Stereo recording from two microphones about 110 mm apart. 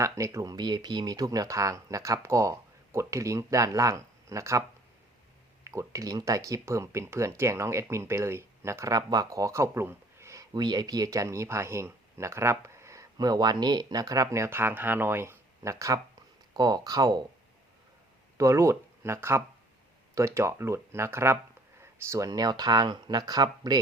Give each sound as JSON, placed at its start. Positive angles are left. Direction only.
{"t": 0.0, "sound": "speech", "side_deg": -30}
{"t": 5.6, "sound": "speech", "side_deg": -25}
{"t": 10.5, "sound": "speech", "side_deg": -40}
{"t": 18.3, "sound": "speech", "side_deg": -30}